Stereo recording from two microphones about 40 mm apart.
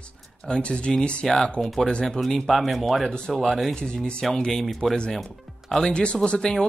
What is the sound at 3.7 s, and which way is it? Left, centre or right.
Speech, left.